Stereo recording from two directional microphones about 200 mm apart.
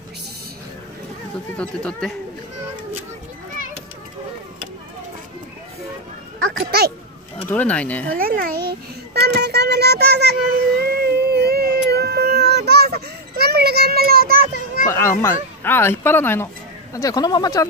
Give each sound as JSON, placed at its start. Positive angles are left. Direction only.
{"t": 1.6, "sound": "speech", "side_deg": 5}
{"t": 6.6, "sound": "a child's voice", "side_deg": -50}
{"t": 7.4, "sound": "speech", "side_deg": 5}
{"t": 8.2, "sound": "a child's voice", "side_deg": -50}
{"t": 10.8, "sound": "a sound", "side_deg": -50}
{"t": 14.9, "sound": "speech", "side_deg": 15}